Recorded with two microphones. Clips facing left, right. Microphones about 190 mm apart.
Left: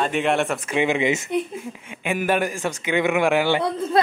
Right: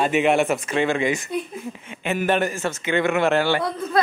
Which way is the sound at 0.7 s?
15° left (ahead or behind).